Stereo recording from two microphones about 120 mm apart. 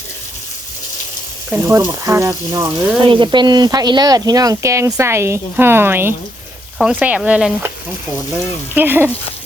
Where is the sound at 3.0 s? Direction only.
40° right (ahead or behind); by 7.6 s 10° right (ahead or behind).